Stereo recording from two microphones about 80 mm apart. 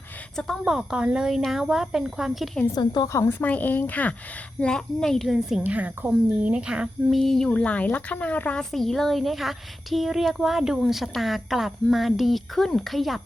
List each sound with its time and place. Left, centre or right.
0.3 s speech: centre
0.6 s speech: centre
2.7 s a woman's voice: left
3.1 s a woman's voice: left
4.6 s speech: centre
5.3 s speech: centre
5.6 s speech: centre
7.1 s speech: centre
8.7 s speech: centre